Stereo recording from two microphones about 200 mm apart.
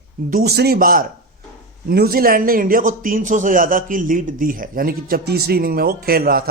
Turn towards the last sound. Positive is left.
turn(degrees=-50)  # may be behind; listen again after turning